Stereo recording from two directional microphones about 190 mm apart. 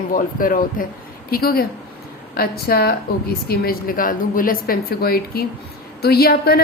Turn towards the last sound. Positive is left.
turn(degrees=55)  # may be behind; listen again after turning